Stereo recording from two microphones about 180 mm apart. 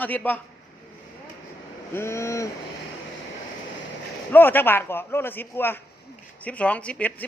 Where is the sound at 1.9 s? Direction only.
15° left (ahead or behind).